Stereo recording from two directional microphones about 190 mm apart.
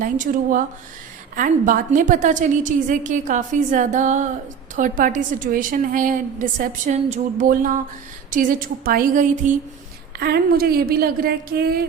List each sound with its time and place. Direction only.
0.0 s a woman's voice: 45° right (ahead or behind)
10.2 s a woman's voice: 55° right (ahead or behind)